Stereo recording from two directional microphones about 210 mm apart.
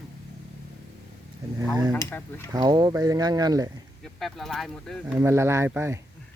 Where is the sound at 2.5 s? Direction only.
20° right (ahead or behind).